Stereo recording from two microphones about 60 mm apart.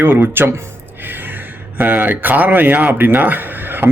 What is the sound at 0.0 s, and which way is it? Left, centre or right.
Speech, right.